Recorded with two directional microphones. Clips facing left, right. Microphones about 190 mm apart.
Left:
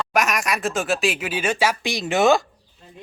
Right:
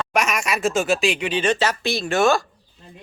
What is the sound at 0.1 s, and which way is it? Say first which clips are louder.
Speech: even; centre (ahead or behind).